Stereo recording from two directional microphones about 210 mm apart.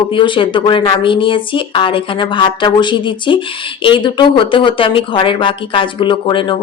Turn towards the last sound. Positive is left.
turn(degrees=20)  # may be behind; listen again after turning